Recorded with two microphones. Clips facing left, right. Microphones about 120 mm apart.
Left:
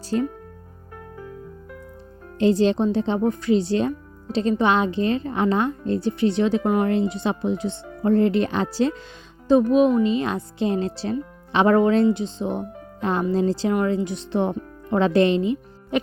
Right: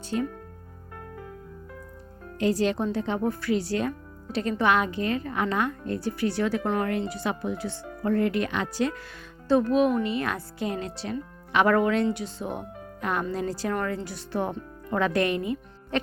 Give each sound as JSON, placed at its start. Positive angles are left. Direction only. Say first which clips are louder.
{"t": 0.0, "sound": "speech", "louder": "left 5 dB", "side_deg": 35}
{"t": 2.4, "sound": "speech", "louder": "left 6 dB", "side_deg": 25}
{"t": 9.5, "sound": "speech", "louder": "left 5 dB", "side_deg": 20}